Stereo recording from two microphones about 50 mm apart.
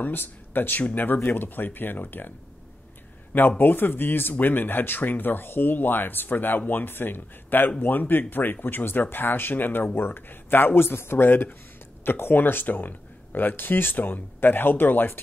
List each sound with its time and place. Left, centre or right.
0.0 s speech: left
3.3 s speech: left